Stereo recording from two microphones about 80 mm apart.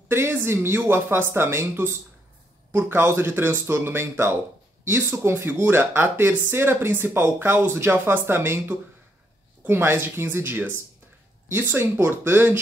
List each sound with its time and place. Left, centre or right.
0.1 s speech: right